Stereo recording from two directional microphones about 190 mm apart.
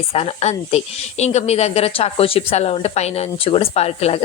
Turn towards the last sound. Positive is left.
turn(degrees=30)  # may be behind; listen again after turning